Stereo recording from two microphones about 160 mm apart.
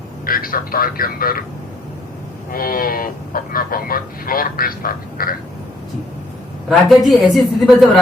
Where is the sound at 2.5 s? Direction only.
65° left (ahead or behind).